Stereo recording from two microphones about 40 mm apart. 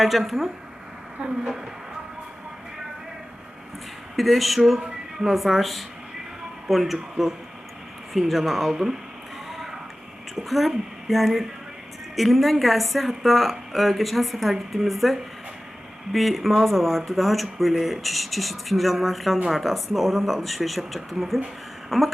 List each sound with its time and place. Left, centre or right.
0.0 s a woman's voice: centre
1.2 s speech: right
4.2 s a woman's voice: centre
10.3 s a woman's voice: centre
21.8 s a sound: centre